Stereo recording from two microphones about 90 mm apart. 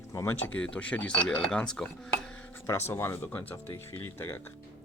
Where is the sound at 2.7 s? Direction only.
30° left (ahead or behind).